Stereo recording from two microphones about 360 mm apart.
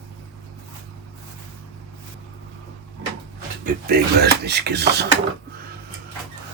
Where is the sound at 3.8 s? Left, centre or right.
Right.